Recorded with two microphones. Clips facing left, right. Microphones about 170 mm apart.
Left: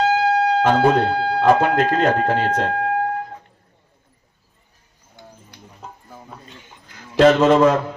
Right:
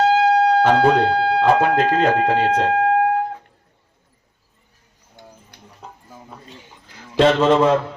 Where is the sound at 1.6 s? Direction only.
30° right (ahead or behind).